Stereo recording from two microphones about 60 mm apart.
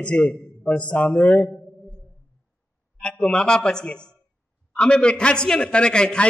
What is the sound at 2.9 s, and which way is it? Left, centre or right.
A man's voice, centre.